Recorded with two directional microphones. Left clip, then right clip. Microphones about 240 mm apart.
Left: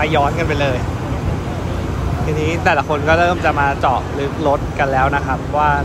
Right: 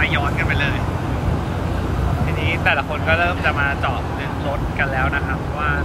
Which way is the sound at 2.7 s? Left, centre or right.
Left.